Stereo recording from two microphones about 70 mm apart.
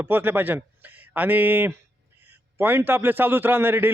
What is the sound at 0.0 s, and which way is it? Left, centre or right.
A man's voice, right.